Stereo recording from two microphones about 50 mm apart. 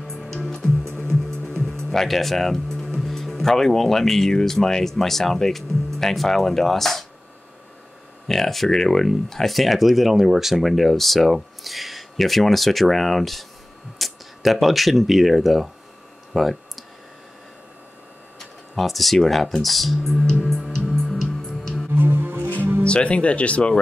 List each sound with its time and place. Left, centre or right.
0.3 s music: centre
1.4 s speech: centre
8.3 s speech: centre
18.4 s speech: centre
20.8 s music: centre
21.9 s music: right
22.8 s speech: left